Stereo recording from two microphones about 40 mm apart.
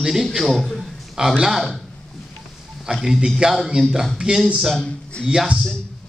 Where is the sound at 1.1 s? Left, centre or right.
Centre.